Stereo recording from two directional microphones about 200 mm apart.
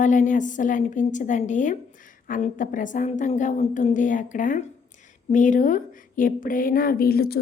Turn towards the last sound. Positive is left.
turn(degrees=50)  # may be behind; listen again after turning